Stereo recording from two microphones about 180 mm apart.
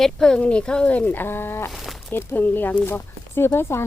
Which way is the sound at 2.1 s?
10° left (ahead or behind).